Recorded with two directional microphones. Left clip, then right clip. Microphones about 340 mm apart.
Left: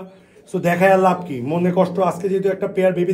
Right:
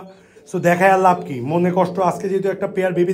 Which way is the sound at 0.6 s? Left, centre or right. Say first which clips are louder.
Right 1 dB; right.